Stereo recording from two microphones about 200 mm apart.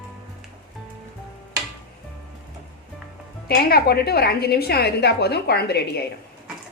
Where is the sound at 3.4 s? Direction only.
50° left (ahead or behind).